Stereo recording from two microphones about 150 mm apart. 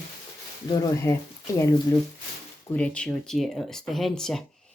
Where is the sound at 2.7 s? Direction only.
10° left (ahead or behind).